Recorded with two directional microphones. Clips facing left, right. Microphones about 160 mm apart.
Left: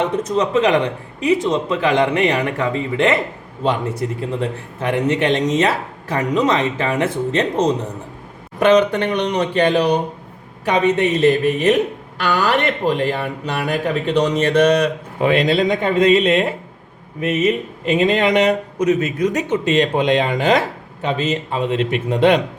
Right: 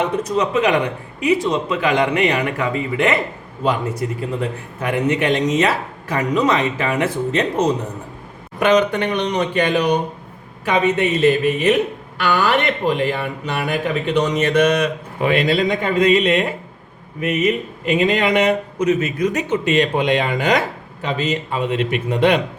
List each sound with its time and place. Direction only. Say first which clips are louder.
0.0 s speech: left 1 dB; 25° left (ahead or behind)
15.2 s speech: left 1 dB; 25° left (ahead or behind)